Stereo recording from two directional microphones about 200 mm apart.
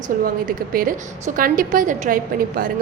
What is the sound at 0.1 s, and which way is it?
A woman's voice, 45° right (ahead or behind).